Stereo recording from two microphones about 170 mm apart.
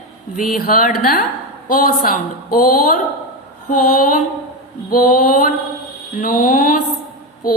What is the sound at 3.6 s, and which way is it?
Mantra, 55° left (ahead or behind).